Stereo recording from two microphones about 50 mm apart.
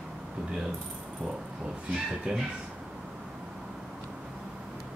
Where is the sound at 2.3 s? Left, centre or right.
Right.